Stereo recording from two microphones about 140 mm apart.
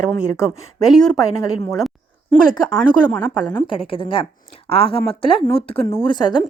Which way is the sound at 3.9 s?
35° left (ahead or behind).